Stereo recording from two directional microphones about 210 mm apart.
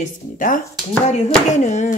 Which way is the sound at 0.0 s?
40° left (ahead or behind).